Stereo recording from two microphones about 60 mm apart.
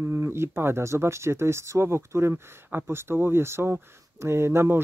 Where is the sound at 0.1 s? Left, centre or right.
Right.